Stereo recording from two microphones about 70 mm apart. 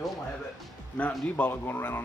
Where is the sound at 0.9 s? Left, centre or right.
Left.